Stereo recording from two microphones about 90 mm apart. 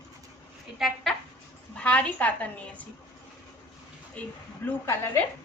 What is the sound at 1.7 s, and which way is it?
Speech, 15° left (ahead or behind).